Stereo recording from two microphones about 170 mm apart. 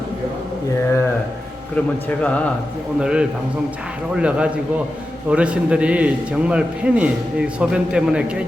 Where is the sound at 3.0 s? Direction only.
5° right (ahead or behind).